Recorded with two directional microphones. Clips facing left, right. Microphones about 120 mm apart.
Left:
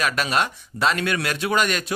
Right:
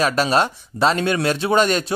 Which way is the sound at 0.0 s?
30° right (ahead or behind).